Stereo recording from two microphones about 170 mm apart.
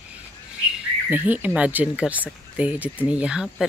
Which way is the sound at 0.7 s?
5° right (ahead or behind).